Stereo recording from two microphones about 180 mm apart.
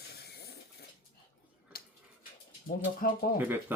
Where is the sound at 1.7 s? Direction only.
55° left (ahead or behind).